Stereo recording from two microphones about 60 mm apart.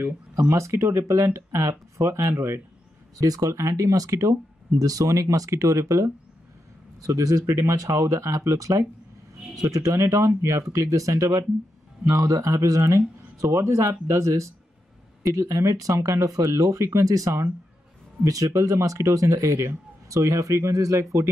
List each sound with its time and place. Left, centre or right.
0.0 s speech: right
3.2 s speech: right
9.6 s speech: right